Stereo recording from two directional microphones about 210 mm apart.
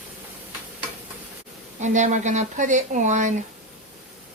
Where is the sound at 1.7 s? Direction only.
35° right (ahead or behind).